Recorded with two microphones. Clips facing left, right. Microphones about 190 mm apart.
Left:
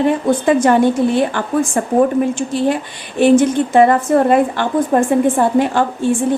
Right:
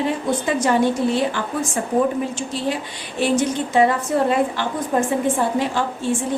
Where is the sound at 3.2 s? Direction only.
55° left (ahead or behind).